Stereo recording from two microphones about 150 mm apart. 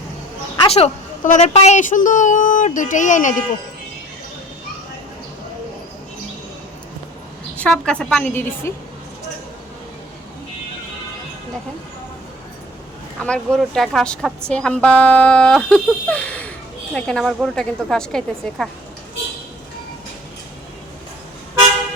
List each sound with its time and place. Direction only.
0.7 s a woman's voice: 50° left (ahead or behind)
7.5 s speech: 5° left (ahead or behind)
13.2 s a woman's voice: 5° left (ahead or behind)